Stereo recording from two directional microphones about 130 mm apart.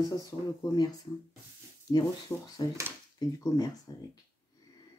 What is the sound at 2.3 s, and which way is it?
Speech, 10° left (ahead or behind).